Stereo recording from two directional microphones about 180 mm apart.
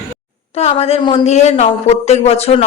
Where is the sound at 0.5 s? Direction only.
35° left (ahead or behind).